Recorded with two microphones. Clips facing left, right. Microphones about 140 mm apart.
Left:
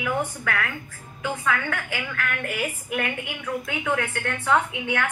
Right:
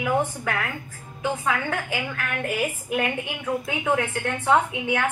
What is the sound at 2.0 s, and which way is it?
A woman's voice, 25° right (ahead or behind).